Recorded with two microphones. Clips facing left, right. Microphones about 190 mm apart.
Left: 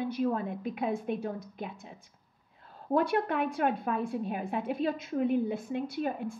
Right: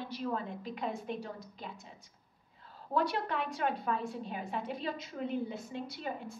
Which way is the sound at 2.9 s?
55° left (ahead or behind).